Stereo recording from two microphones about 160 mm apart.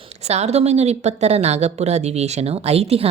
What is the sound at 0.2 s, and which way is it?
A woman's voice, 40° right (ahead or behind).